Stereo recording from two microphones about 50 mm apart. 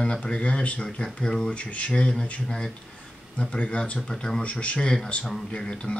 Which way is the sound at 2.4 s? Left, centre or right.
Centre.